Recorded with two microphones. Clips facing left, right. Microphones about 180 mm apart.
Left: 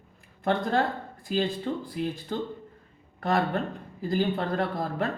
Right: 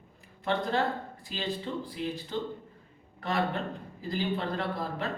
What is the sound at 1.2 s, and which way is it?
A woman's voice, 50° left (ahead or behind).